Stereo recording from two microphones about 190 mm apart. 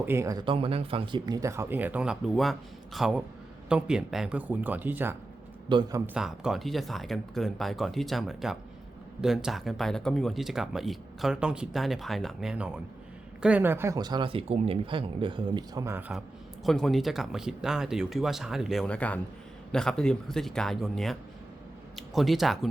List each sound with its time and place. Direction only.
0.0 s speech: 15° right (ahead or behind)
5.6 s speech: 25° right (ahead or behind)
6.1 s speech: 5° right (ahead or behind)